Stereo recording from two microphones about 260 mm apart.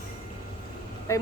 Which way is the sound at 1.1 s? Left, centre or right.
Centre.